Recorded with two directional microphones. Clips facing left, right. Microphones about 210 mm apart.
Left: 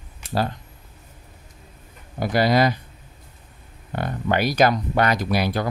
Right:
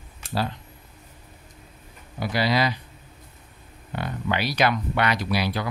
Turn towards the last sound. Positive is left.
turn(degrees=50)  # may be behind; listen again after turning